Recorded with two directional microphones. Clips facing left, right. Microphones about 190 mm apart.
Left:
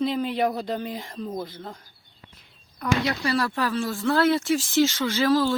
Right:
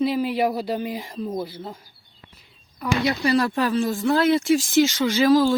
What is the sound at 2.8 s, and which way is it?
Speech, 15° right (ahead or behind).